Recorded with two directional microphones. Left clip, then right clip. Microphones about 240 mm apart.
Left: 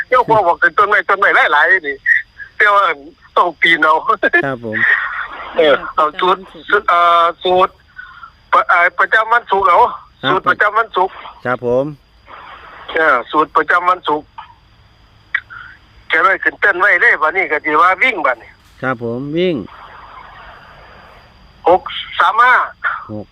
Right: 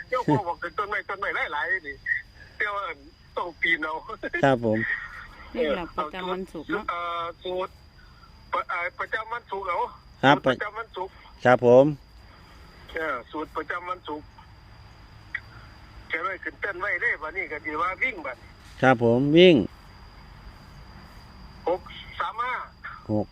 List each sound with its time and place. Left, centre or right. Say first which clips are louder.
0.1 s speech: left 14 dB; left
4.4 s speech: even; centre
4.7 s speech: left 14 dB; left
11.4 s speech: even; centre
12.9 s speech: left 18 dB; left
16.0 s speech: left 18 dB; left
18.8 s speech: even; centre
21.6 s speech: left 16 dB; left